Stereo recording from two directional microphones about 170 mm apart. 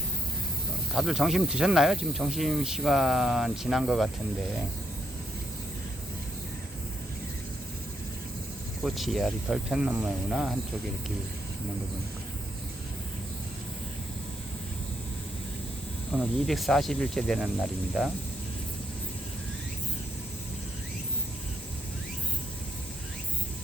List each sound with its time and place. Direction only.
0.9 s speech: centre (ahead or behind)
8.8 s speech: centre (ahead or behind)
16.1 s speech: centre (ahead or behind)